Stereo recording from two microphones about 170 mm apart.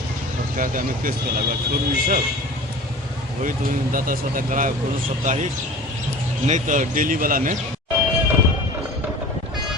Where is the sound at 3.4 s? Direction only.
50° right (ahead or behind).